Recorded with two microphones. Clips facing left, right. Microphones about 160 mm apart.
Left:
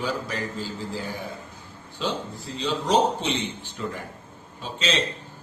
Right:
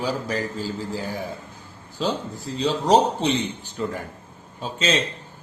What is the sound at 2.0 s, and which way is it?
A man's voice, 40° right (ahead or behind).